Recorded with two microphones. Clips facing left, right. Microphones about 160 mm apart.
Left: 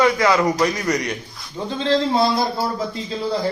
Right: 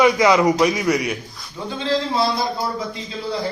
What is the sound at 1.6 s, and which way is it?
Speech, 20° left (ahead or behind).